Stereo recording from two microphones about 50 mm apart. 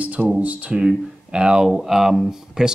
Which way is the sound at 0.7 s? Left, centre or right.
Centre.